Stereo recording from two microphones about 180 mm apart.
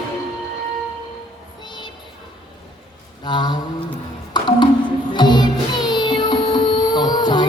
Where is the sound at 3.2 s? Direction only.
25° left (ahead or behind).